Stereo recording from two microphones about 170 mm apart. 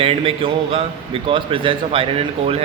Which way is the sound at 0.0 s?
35° right (ahead or behind).